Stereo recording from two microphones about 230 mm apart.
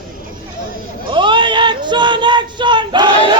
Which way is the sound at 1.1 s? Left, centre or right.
Right.